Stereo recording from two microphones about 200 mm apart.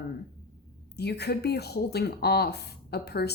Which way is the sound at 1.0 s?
55° left (ahead or behind).